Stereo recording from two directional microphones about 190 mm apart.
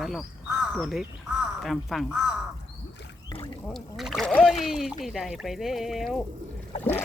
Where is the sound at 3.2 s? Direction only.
25° left (ahead or behind).